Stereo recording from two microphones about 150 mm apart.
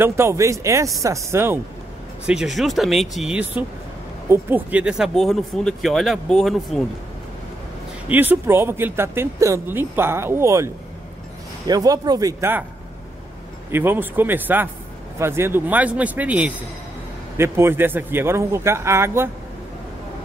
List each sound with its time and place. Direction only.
0.0 s speech: 20° right (ahead or behind)
2.2 s speech: 5° right (ahead or behind)
8.1 s speech: 10° right (ahead or behind)
13.7 s speech: 15° right (ahead or behind)